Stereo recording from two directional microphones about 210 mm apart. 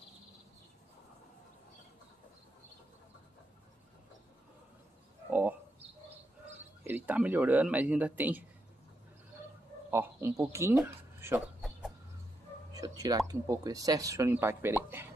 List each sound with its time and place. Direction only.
5.3 s a sound: 10° right (ahead or behind)
6.8 s speech: 10° right (ahead or behind)
9.8 s speech: 10° right (ahead or behind)
10.8 s chicken: 5° right (ahead or behind)
12.7 s a sound: 15° right (ahead or behind)
13.3 s speech: 15° right (ahead or behind)